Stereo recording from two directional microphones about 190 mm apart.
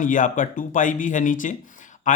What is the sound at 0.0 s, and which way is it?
A man's voice, 45° left (ahead or behind).